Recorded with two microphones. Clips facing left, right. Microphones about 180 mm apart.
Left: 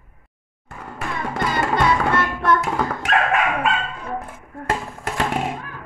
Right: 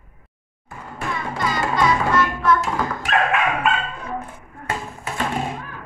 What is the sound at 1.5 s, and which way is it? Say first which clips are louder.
Music: even; 60° left (ahead or behind).